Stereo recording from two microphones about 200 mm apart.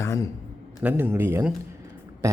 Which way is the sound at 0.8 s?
10° right (ahead or behind).